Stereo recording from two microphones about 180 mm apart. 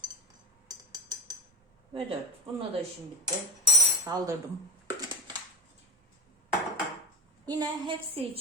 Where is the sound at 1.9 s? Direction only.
30° right (ahead or behind).